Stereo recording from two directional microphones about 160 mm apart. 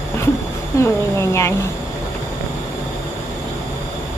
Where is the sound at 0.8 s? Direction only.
15° left (ahead or behind).